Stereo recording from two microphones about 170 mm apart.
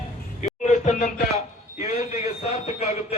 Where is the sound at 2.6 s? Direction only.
40° left (ahead or behind).